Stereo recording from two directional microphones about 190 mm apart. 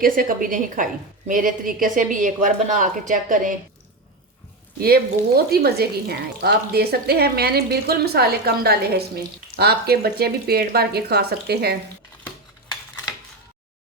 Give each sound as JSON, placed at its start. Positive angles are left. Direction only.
{"t": 0.0, "sound": "a woman's voice", "side_deg": -50}
{"t": 4.8, "sound": "a woman's voice", "side_deg": -50}
{"t": 12.2, "sound": "a sound", "side_deg": 25}